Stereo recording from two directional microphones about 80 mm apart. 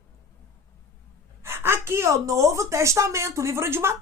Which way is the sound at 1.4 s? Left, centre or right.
Right.